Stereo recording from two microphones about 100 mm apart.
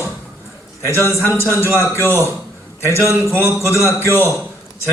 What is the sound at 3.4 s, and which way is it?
Speech, 30° right (ahead or behind).